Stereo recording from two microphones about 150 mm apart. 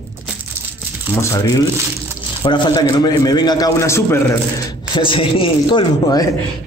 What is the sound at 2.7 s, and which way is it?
A man's voice, 25° left (ahead or behind).